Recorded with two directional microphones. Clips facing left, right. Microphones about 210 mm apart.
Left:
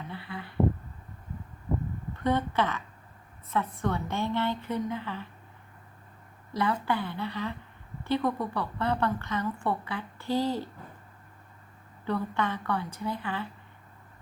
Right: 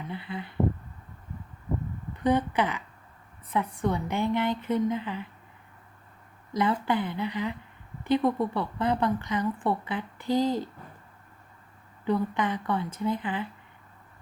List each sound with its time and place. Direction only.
0.1 s a sound: 20° right (ahead or behind)
2.2 s a woman's voice: 15° right (ahead or behind)
6.5 s a woman's voice: 20° right (ahead or behind)
12.0 s a woman's voice: 15° right (ahead or behind)